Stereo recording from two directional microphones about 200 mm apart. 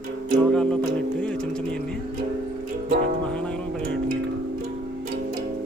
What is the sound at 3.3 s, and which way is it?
Speech, 5° left (ahead or behind).